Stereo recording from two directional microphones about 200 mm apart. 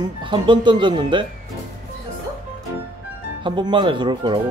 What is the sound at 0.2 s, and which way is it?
Speech, 25° right (ahead or behind).